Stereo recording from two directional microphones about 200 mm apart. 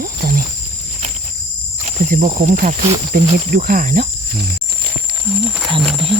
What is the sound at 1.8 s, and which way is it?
Speech, 40° right (ahead or behind).